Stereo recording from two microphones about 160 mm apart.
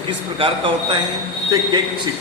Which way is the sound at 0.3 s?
30° right (ahead or behind).